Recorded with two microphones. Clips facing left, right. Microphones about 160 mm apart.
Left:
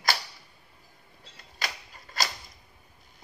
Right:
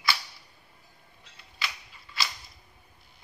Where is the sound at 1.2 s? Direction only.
40° left (ahead or behind).